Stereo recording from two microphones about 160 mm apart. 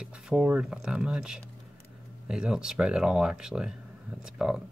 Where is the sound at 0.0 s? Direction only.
5° right (ahead or behind).